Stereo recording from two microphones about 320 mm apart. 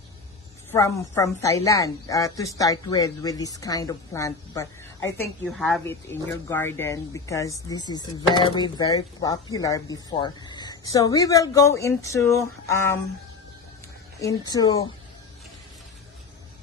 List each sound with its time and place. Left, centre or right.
0.7 s a woman's voice: centre
14.5 s a woman's voice: centre